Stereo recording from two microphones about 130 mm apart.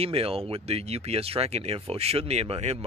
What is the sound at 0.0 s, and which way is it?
Speech, 50° right (ahead or behind).